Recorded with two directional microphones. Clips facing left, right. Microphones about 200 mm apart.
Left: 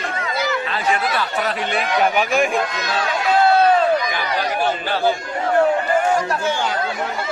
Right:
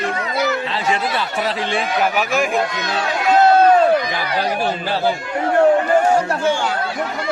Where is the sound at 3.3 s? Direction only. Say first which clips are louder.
Right 3 dB; 45° right (ahead or behind).